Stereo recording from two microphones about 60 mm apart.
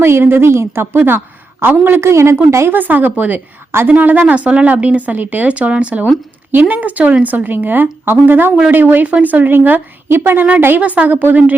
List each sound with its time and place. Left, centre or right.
0.0 s a woman's voice: right
2.0 s a woman's voice: right
2.6 s a woman's voice: right
10.8 s speech: right